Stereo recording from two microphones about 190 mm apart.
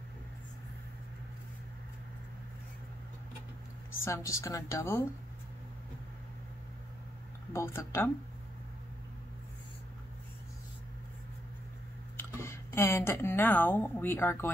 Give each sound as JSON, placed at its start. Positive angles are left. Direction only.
{"t": 4.0, "sound": "a woman's voice", "side_deg": 15}
{"t": 7.5, "sound": "a woman's voice", "side_deg": 15}
{"t": 12.2, "sound": "speech", "side_deg": 15}